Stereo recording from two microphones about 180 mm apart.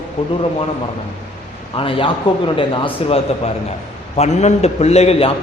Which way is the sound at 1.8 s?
30° left (ahead or behind).